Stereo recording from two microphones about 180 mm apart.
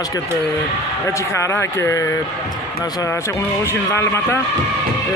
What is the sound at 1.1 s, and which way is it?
Speech, 15° left (ahead or behind).